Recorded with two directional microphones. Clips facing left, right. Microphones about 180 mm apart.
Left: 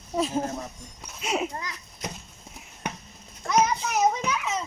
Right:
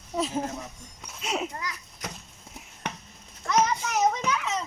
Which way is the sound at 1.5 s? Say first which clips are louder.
Even; 30° left (ahead or behind).